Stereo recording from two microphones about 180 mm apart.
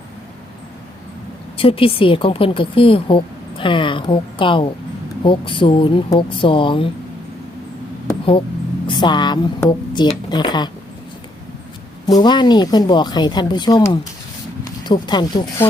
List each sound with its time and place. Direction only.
1.5 s speech: 30° left (ahead or behind)
8.2 s speech: 30° left (ahead or behind)
12.0 s speech: 20° left (ahead or behind)